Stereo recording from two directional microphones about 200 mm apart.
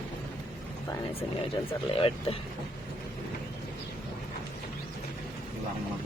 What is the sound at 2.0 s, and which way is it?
Speech, 25° left (ahead or behind).